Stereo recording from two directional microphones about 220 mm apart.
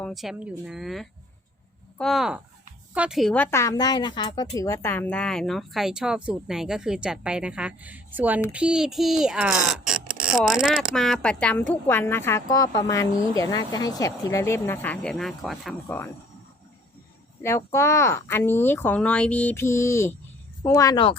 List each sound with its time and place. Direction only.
0.0 s a woman's voice: centre (ahead or behind)
17.4 s a woman's voice: 10° left (ahead or behind)